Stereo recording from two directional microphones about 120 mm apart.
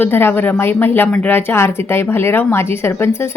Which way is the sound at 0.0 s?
20° left (ahead or behind).